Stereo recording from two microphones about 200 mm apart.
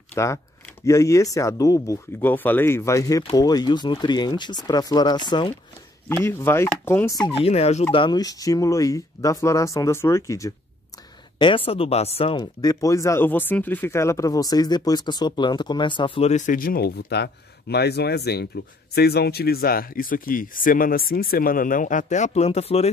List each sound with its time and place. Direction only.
0.1 s speech: 15° left (ahead or behind)
6.0 s speech: 10° left (ahead or behind)
7.3 s speech: 30° left (ahead or behind)